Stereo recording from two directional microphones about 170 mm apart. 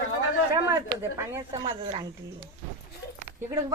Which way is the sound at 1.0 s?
15° right (ahead or behind).